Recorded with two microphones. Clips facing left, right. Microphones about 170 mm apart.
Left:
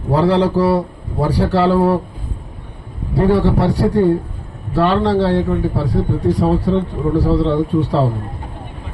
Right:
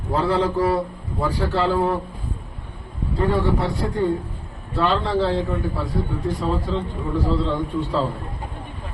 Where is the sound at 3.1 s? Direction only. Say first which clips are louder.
Left 7 dB; 80° left.